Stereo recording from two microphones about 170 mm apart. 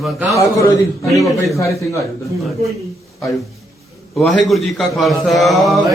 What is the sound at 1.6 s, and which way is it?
Speech, 15° left (ahead or behind).